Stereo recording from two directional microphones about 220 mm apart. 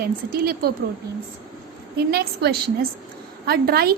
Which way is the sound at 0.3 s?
45° right (ahead or behind).